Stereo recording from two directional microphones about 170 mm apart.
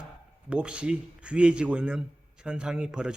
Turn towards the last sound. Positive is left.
turn(degrees=-5)  # may be behind; listen again after turning